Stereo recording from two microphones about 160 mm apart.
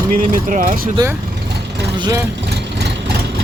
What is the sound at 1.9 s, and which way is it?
Speech, 25° right (ahead or behind).